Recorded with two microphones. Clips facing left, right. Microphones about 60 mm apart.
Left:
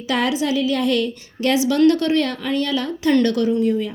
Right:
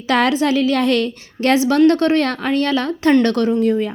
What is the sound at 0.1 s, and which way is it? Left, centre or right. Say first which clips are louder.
A woman's voice: right 4 dB; right.